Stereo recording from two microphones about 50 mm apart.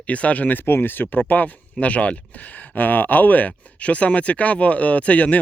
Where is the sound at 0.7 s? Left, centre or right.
Left.